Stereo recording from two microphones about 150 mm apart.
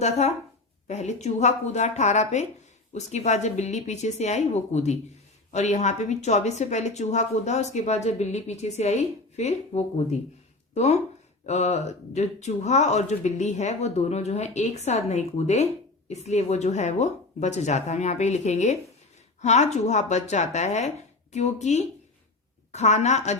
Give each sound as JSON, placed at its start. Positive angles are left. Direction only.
{"t": 0.0, "sound": "speech", "side_deg": 45}